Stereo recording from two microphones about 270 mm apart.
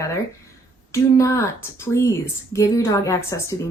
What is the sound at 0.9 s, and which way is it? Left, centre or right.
Speech, centre.